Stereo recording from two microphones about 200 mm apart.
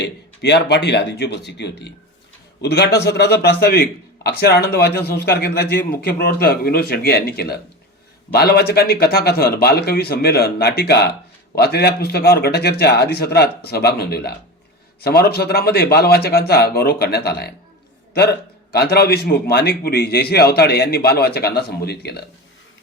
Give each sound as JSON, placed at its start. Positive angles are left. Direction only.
{"t": 0.0, "sound": "a man's voice", "side_deg": 60}